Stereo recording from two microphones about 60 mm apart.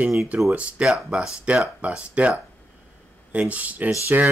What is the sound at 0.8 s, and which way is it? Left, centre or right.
Speech, centre.